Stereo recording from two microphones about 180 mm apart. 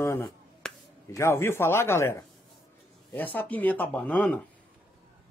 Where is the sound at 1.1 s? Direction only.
15° left (ahead or behind).